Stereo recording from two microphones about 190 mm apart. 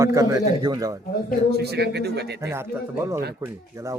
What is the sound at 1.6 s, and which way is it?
Speech, 60° right (ahead or behind).